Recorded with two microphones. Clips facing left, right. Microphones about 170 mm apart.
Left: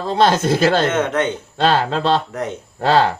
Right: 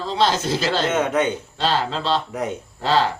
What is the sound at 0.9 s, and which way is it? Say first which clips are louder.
Speech: left 1 dB; 10° right (ahead or behind).